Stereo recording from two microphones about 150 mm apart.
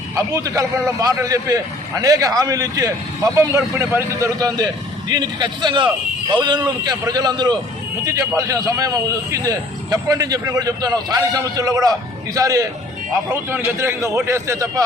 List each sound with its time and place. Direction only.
0.3 s a man's voice: 20° right (ahead or behind)